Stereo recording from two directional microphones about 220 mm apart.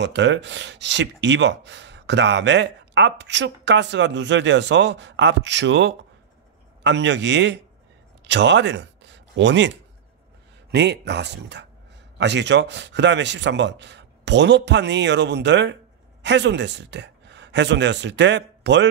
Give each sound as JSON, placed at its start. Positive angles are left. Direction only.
{"t": 0.0, "sound": "a man's voice", "side_deg": -55}
{"t": 10.7, "sound": "speech", "side_deg": -50}